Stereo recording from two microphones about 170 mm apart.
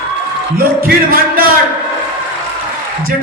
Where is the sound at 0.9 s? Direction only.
60° right (ahead or behind).